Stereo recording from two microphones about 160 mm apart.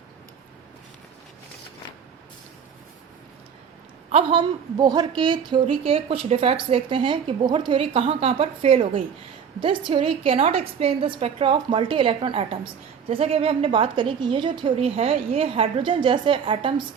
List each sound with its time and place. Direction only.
4.1 s a woman's voice: 30° right (ahead or behind)